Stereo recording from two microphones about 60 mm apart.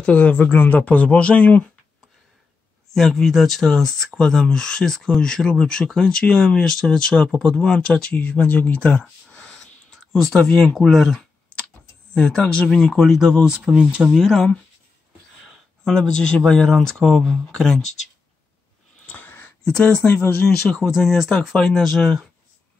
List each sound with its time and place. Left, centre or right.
0.0 s speech: left
2.9 s speech: centre
13.7 s speech: centre
15.8 s speech: centre
19.0 s a sound: left
20.1 s speech: left
20.8 s speech: centre